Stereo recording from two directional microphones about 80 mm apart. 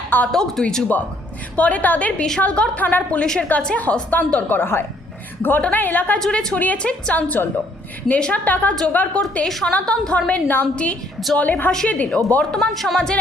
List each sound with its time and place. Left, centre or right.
0.3 s a woman's voice: centre
1.5 s a woman's voice: centre
6.1 s a woman's voice: centre; by 9.2 s left
9.5 s a woman's voice: centre
12.5 s speech: centre